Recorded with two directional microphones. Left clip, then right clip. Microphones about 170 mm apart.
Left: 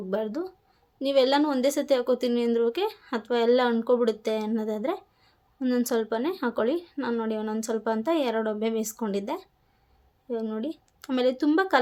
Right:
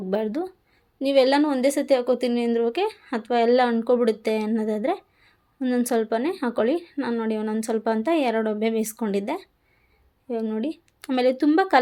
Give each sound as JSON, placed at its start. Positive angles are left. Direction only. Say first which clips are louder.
{"t": 0.1, "sound": "a woman's voice", "louder": "right 4 dB", "side_deg": -15}